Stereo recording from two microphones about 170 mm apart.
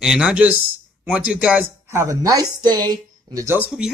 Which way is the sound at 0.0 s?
5° right (ahead or behind).